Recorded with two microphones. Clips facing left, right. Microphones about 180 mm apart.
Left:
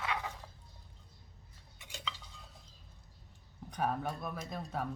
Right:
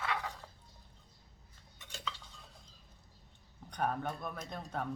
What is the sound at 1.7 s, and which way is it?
Cutlery, 15° left (ahead or behind).